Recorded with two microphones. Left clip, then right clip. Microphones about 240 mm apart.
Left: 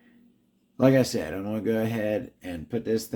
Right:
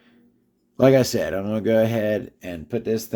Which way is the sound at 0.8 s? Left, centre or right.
Right.